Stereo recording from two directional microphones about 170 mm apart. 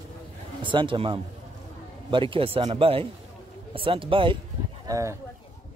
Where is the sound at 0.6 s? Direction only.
30° right (ahead or behind).